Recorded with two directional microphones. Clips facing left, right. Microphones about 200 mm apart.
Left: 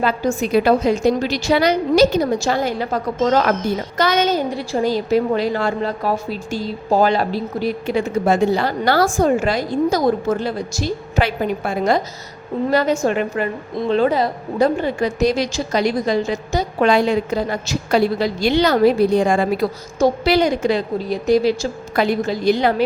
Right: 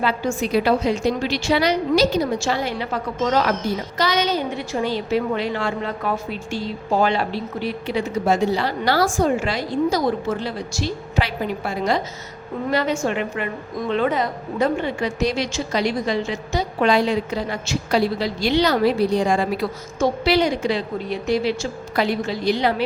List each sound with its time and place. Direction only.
0.0 s a woman's voice: 45° left (ahead or behind)